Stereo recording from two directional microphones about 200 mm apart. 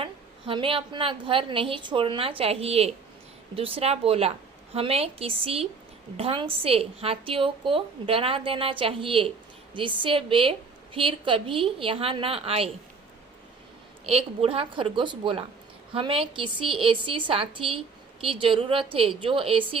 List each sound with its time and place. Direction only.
0.0 s a woman's voice: 25° right (ahead or behind)
14.0 s a woman's voice: 30° right (ahead or behind)